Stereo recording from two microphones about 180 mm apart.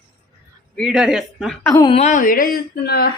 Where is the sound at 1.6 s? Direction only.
25° left (ahead or behind).